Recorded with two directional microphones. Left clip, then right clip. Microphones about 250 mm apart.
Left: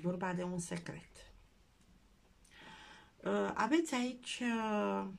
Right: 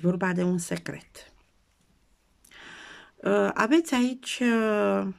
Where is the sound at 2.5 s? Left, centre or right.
Right.